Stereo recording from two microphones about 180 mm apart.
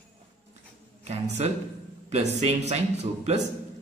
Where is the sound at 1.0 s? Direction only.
35° right (ahead or behind).